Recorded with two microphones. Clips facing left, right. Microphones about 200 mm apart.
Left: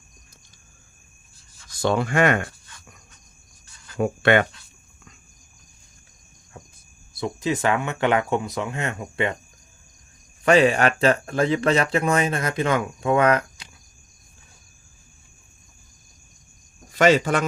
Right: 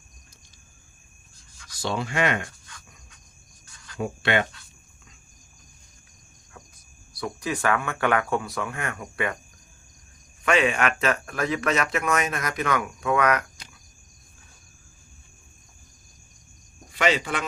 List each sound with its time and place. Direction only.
1.8 s speech: 55° left (ahead or behind)
3.9 s speech: 55° left (ahead or behind)
7.2 s speech: 20° left (ahead or behind)
10.4 s speech: 35° left (ahead or behind)
16.9 s speech: 45° left (ahead or behind)